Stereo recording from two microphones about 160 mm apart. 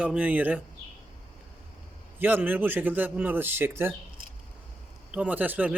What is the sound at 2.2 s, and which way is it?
A man's voice, 10° right (ahead or behind).